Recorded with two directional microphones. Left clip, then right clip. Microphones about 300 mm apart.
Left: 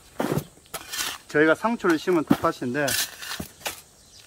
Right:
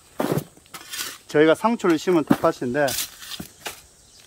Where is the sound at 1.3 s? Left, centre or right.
Right.